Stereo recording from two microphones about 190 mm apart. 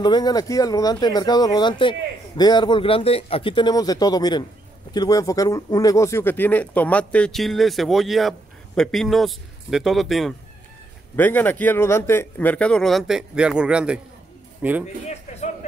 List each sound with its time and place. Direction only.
0.0 s speech: 20° left (ahead or behind); by 14.9 s 10° right (ahead or behind)